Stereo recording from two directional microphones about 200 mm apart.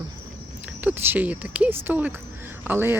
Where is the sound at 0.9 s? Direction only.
10° right (ahead or behind).